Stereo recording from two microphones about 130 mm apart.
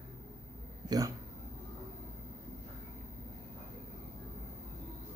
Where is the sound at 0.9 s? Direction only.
30° right (ahead or behind).